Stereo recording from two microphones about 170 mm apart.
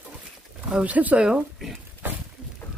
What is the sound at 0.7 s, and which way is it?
Speech, 10° right (ahead or behind).